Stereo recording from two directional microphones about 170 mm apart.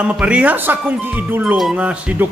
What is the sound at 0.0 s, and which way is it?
Speech, 5° right (ahead or behind).